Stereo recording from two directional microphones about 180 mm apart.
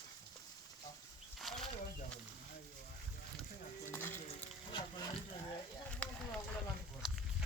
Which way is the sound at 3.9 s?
10° left (ahead or behind).